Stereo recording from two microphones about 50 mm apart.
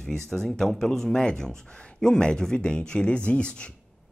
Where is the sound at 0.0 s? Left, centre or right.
Centre.